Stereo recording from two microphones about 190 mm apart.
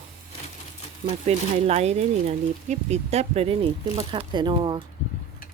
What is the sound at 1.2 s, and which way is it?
Speech, 35° right (ahead or behind).